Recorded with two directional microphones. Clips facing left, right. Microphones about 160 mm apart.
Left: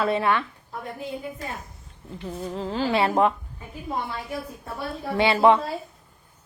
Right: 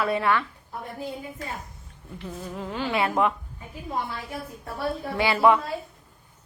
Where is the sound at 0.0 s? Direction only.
25° left (ahead or behind).